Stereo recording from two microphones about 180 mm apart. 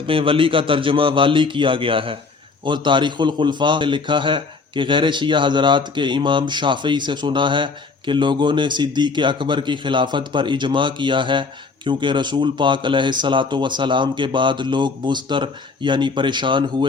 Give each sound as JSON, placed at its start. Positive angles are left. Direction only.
{"t": 0.1, "sound": "a man's voice", "side_deg": -30}